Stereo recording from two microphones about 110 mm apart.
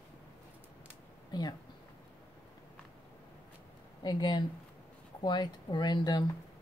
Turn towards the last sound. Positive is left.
turn(degrees=40)  # may be behind; listen again after turning